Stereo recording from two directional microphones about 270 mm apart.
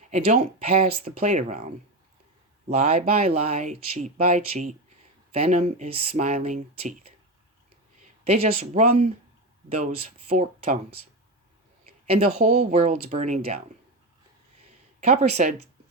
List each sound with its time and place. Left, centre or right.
0.1 s speech: right
2.6 s speech: right
8.3 s speech: right
12.2 s speech: right
15.0 s speech: right